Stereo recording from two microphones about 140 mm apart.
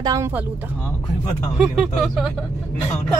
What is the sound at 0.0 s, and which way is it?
Speech, 25° right (ahead or behind).